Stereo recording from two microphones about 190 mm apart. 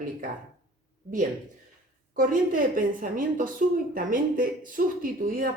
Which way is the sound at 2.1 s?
45° right (ahead or behind).